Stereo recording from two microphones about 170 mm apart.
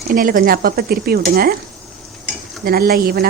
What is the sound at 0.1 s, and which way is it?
Speech, 55° right (ahead or behind).